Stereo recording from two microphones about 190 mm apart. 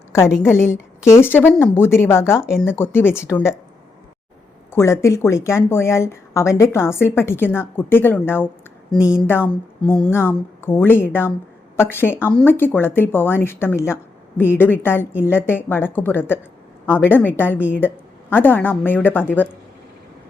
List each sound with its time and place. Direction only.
0.4 s speech: 15° left (ahead or behind)
4.7 s speech: 15° left (ahead or behind)